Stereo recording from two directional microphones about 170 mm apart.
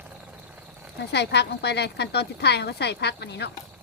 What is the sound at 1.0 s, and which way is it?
Speech, 85° left.